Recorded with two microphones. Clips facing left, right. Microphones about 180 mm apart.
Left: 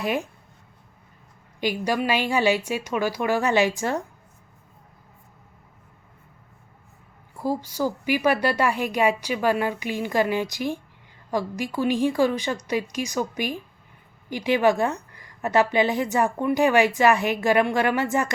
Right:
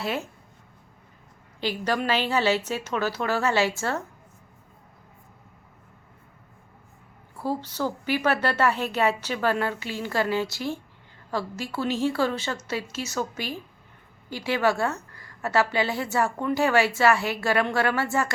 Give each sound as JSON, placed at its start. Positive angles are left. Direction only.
{"t": 0.0, "sound": "a woman's voice", "side_deg": 15}
{"t": 1.6, "sound": "a woman's voice", "side_deg": 10}
{"t": 7.3, "sound": "a woman's voice", "side_deg": 10}